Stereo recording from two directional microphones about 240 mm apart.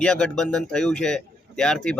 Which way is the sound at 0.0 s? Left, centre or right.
Centre.